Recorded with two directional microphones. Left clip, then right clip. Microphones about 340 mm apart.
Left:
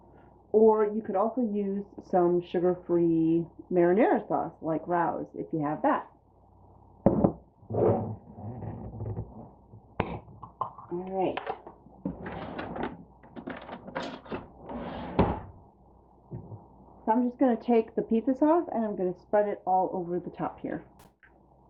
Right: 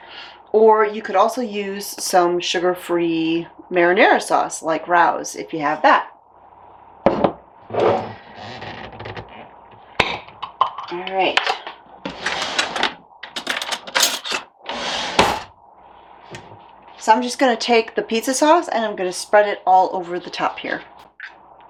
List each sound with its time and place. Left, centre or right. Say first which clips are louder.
0.5 s speech: right 9 dB; centre
3.1 s speech: right 5 dB; right
3.7 s speech: right 10 dB; centre
7.0 s a sound: right 9 dB; centre
17.1 s speech: right 11 dB; centre